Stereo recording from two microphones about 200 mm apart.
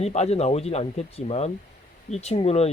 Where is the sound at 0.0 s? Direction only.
35° left (ahead or behind).